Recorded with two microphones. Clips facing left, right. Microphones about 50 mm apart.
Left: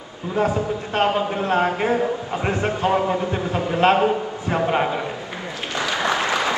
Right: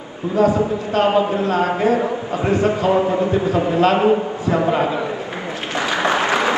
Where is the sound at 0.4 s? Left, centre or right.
Left.